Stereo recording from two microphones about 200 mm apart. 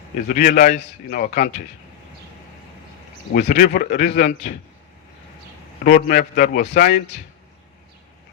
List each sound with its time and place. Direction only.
0.3 s a man's voice: 45° left (ahead or behind)
3.3 s a man's voice: 45° left (ahead or behind)
5.8 s a man's voice: 45° left (ahead or behind)